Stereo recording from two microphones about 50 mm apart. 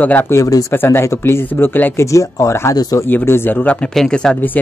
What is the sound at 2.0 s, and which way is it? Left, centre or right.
Speech, left.